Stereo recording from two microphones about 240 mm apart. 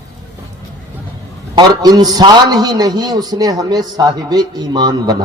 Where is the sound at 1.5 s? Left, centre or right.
Centre.